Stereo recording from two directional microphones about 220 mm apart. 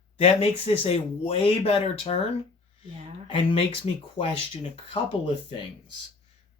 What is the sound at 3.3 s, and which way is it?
Speech, 25° left (ahead or behind).